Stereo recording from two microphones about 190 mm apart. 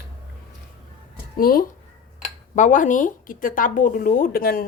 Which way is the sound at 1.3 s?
50° left (ahead or behind).